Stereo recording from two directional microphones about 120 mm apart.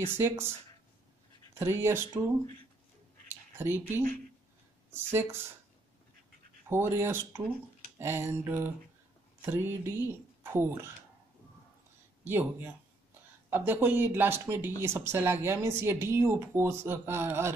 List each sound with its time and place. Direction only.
0.1 s speech: 20° right (ahead or behind)
1.5 s speech: 20° right (ahead or behind)
3.5 s speech: 20° right (ahead or behind)
6.7 s speech: 20° right (ahead or behind)
12.3 s speech: 15° right (ahead or behind)